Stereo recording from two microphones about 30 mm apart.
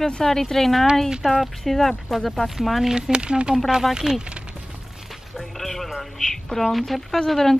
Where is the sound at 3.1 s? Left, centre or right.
Right.